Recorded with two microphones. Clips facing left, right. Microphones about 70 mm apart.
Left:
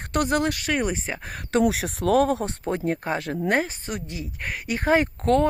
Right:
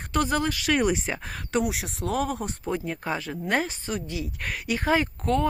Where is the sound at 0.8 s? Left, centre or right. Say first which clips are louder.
Right 2 dB; left.